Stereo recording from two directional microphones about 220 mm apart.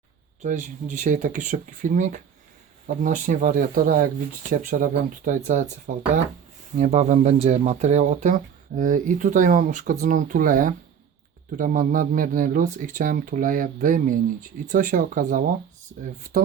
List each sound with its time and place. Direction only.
0.4 s speech: 35° right (ahead or behind)